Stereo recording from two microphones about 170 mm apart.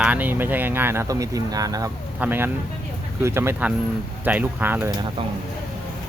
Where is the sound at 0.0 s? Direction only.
10° right (ahead or behind).